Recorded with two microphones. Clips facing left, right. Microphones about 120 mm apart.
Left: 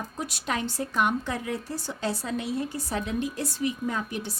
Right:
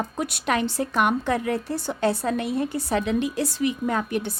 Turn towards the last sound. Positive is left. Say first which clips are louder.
# right 6 dB
turn(degrees=-60)  # may be behind; listen again after turning